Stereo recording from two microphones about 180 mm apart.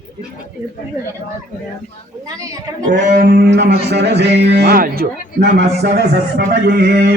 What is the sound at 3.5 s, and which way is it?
A man's voice, 70° right (ahead or behind).